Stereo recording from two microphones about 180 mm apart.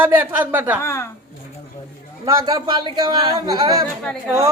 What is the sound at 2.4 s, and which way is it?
Speech, 25° right (ahead or behind).